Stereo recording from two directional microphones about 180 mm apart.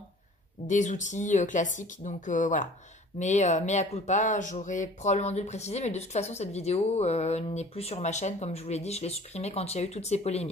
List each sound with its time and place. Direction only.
0.7 s speech: 45° left (ahead or behind)